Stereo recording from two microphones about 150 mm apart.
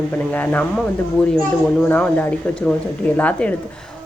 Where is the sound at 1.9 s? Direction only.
10° left (ahead or behind).